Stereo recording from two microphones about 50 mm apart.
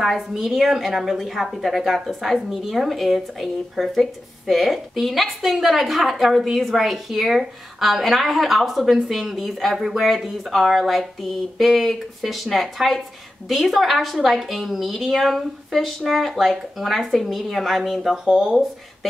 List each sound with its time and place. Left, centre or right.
0.0 s a woman's voice: centre